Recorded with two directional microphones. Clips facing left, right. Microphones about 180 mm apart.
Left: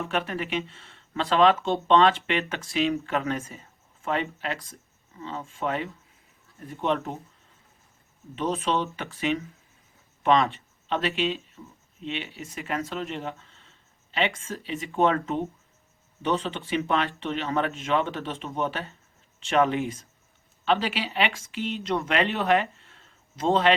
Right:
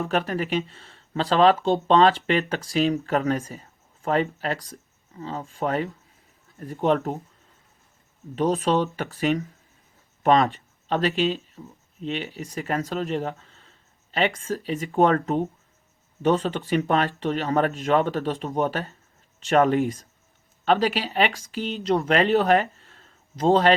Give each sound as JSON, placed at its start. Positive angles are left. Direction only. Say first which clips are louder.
{"t": 0.0, "sound": "speech", "louder": "right 4 dB", "side_deg": -35}
{"t": 8.4, "sound": "speech", "louder": "right 5 dB", "side_deg": -40}